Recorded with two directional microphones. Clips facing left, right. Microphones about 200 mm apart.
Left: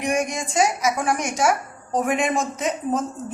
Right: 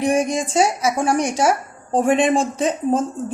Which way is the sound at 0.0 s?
30° right (ahead or behind).